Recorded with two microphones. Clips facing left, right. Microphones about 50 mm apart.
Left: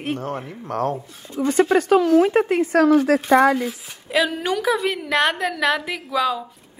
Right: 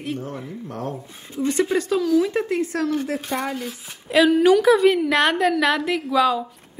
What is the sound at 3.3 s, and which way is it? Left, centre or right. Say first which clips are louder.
Speech: left 11 dB; left.